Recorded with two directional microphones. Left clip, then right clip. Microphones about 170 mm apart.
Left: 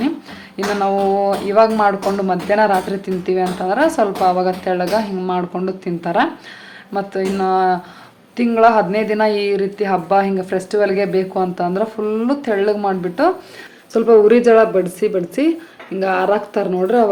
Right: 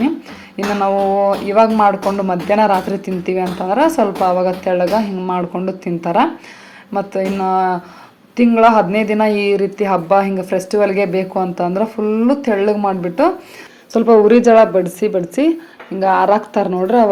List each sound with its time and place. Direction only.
0.5 s speech: 5° right (ahead or behind)
13.9 s a woman's voice: 20° right (ahead or behind)